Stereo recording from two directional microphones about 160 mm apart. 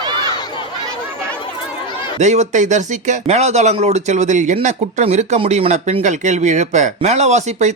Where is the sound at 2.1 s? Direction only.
45° right (ahead or behind).